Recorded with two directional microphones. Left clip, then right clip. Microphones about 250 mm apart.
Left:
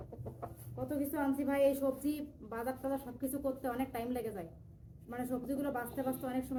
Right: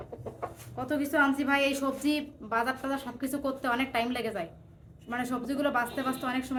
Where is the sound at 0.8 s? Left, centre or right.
Centre.